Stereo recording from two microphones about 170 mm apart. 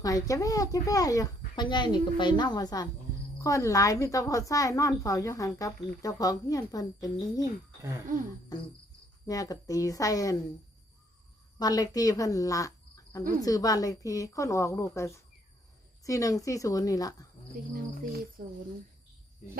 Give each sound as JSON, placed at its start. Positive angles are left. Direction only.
{"t": 0.0, "sound": "a woman's voice", "side_deg": 20}
{"t": 9.2, "sound": "a woman's voice", "side_deg": 20}
{"t": 11.6, "sound": "a woman's voice", "side_deg": 20}
{"t": 18.1, "sound": "speech", "side_deg": -60}